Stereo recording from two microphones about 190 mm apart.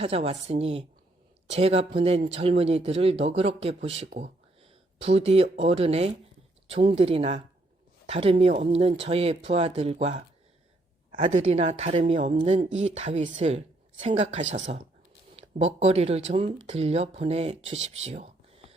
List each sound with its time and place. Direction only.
0.0 s speech: 30° right (ahead or behind)